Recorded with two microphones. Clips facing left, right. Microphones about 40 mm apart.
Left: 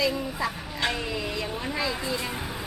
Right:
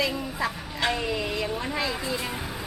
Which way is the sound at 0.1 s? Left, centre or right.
Centre.